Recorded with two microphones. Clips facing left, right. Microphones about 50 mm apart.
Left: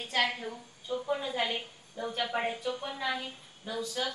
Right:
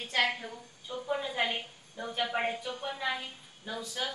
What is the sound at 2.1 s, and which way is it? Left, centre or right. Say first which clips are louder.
A woman's voice: right 1 dB; centre.